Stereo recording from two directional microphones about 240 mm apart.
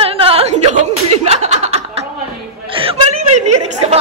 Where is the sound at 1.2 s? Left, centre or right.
Right.